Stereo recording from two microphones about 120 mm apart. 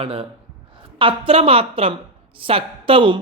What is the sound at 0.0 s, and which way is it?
A woman's voice, 50° right (ahead or behind).